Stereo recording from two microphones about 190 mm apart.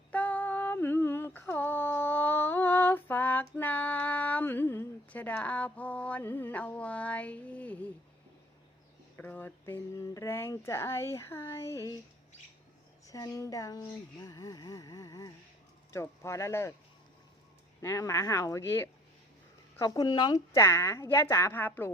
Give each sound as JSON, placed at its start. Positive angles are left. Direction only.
{"t": 0.1, "sound": "a sound", "side_deg": 10}
{"t": 9.1, "sound": "speech", "side_deg": 10}
{"t": 13.1, "sound": "speech", "side_deg": 15}
{"t": 17.7, "sound": "speech", "side_deg": 15}